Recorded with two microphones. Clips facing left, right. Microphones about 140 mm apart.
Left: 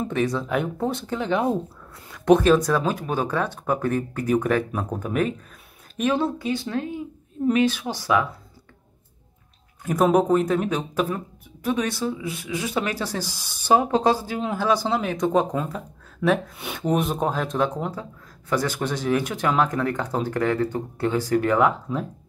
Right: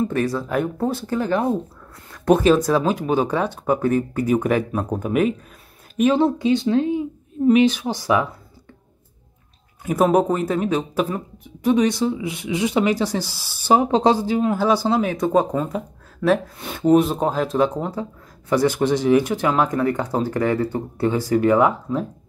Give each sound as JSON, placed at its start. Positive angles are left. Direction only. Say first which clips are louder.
{"t": 0.1, "sound": "speech", "louder": "right 2 dB", "side_deg": -5}
{"t": 2.0, "sound": "a sound", "louder": "right 1 dB", "side_deg": 0}
{"t": 2.3, "sound": "speech", "louder": "right 1 dB", "side_deg": -10}
{"t": 6.1, "sound": "speech", "louder": "right 6 dB", "side_deg": -20}
{"t": 9.8, "sound": "speech", "louder": "right 1 dB", "side_deg": -5}